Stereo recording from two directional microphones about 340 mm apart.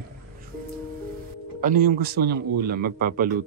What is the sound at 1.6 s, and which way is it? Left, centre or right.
A man's voice, right.